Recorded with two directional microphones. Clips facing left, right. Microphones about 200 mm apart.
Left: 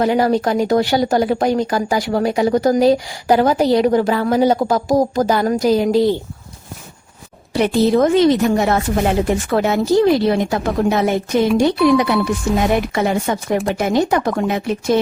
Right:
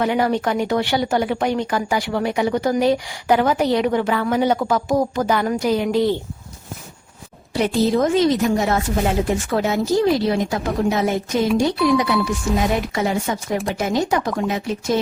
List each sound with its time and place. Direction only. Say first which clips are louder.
0.0 s speech: left 4 dB; 35° left (ahead or behind)
7.5 s a woman's voice: left 4 dB; 65° left (ahead or behind)